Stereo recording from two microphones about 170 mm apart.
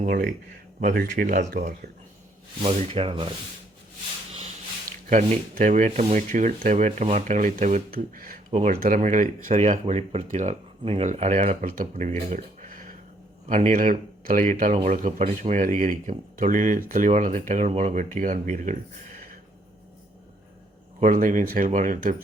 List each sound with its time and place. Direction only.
0.0 s a man's voice: 55° right (ahead or behind)
2.6 s speech: 35° right (ahead or behind)
5.0 s speech: 45° right (ahead or behind)
9.5 s speech: 40° right (ahead or behind)
21.0 s speech: 50° right (ahead or behind)